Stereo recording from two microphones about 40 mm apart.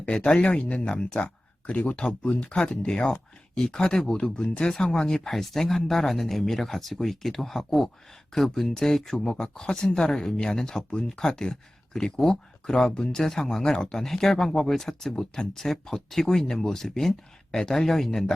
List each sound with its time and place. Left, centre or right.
0.0 s speech: left
1.2 s speech: left
4.7 s speech: centre